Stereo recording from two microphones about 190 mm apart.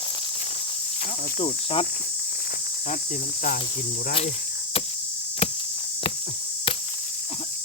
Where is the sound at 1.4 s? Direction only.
30° left (ahead or behind).